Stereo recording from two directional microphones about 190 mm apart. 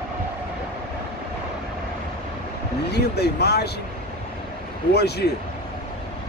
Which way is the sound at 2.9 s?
60° left (ahead or behind).